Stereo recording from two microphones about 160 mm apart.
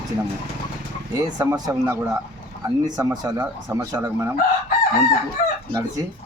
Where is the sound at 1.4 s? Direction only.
20° right (ahead or behind).